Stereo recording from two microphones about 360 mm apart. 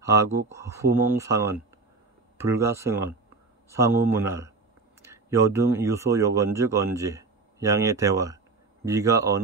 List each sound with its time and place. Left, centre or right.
0.1 s speech: centre